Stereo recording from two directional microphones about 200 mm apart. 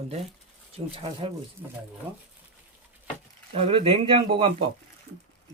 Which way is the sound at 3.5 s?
30° right (ahead or behind).